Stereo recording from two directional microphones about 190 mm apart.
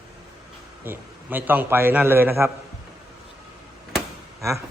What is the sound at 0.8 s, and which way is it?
A man's voice, 10° right (ahead or behind).